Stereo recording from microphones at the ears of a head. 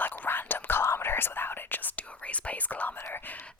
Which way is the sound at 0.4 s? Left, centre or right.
Left.